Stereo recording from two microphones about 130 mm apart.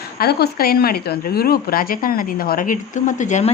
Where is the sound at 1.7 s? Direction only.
90° left; by 3.5 s 65° left (ahead or behind).